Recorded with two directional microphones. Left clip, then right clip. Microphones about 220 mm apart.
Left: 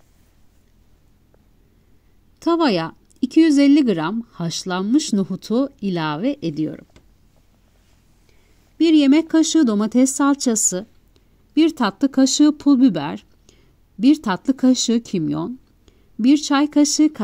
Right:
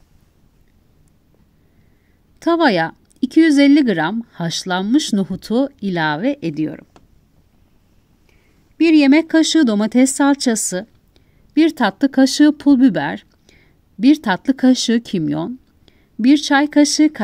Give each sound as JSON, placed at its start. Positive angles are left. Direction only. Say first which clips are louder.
{"t": 2.3, "sound": "speech", "louder": "right 4 dB", "side_deg": 20}
{"t": 9.1, "sound": "speech", "louder": "right 3 dB", "side_deg": 15}